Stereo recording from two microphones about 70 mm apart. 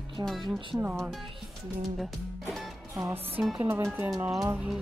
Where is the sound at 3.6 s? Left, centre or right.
Right.